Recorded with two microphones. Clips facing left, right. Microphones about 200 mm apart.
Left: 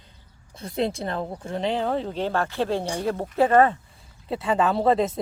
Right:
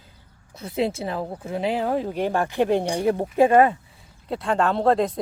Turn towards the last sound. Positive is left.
turn(degrees=0)  # may be behind; listen again after turning